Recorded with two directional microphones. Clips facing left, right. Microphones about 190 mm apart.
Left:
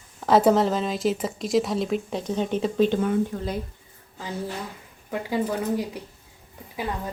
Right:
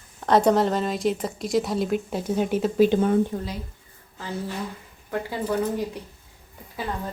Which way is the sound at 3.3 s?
20° right (ahead or behind).